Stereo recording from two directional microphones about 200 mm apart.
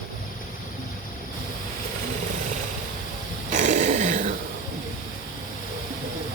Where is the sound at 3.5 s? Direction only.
40° right (ahead or behind).